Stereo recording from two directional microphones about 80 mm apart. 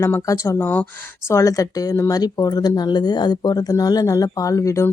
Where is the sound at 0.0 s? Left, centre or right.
Left.